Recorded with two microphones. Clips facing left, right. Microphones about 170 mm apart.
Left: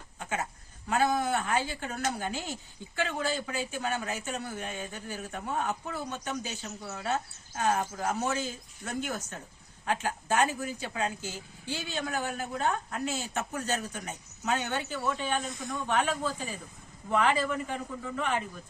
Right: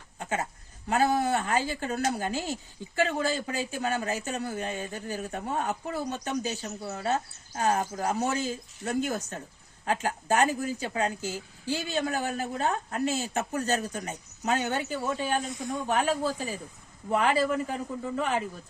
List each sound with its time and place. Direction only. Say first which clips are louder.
0.2 s a sound: right 3 dB; 35° right (ahead or behind)
1.2 s speech: right 2 dB; 40° right (ahead or behind)
15.4 s speech: right 3 dB; 10° right (ahead or behind)
17.1 s speech: right 2 dB; 35° right (ahead or behind)